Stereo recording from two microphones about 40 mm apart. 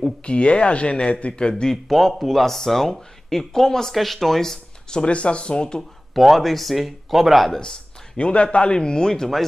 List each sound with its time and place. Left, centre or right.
0.2 s speech: left
1.5 s speech: centre
1.9 s speech: centre
2.4 s speech: centre
5.0 s speech: left
6.2 s speech: centre
8.2 s speech: left; by 9.4 s centre